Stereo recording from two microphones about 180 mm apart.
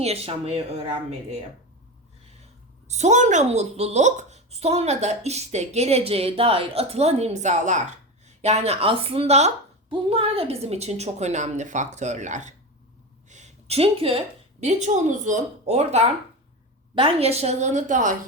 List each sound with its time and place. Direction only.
0.0 s speech: 35° right (ahead or behind)
2.8 s a woman's voice: 40° right (ahead or behind)